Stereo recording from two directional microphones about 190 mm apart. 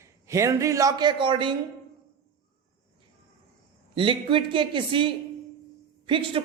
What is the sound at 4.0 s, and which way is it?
A woman's voice, 25° right (ahead or behind).